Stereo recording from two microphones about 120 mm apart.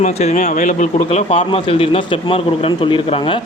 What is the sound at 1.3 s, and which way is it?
A man's voice, 50° left (ahead or behind).